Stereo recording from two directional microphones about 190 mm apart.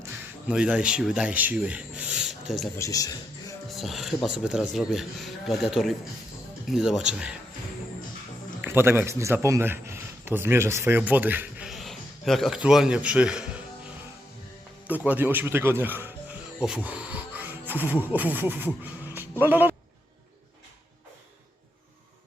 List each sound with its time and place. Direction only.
0.4 s rub: 5° right (ahead or behind)
2.7 s a man's voice: 15° left (ahead or behind)
3.7 s speech: centre (ahead or behind)
8.6 s a man's voice: 10° right (ahead or behind)
14.8 s a man's voice: 10° right (ahead or behind)
19.1 s music: 10° right (ahead or behind)